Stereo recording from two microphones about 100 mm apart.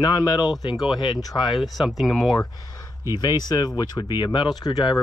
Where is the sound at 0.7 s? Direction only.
5° right (ahead or behind).